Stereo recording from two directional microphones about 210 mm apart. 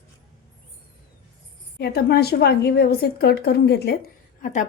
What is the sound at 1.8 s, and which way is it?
A woman's voice, 50° left (ahead or behind).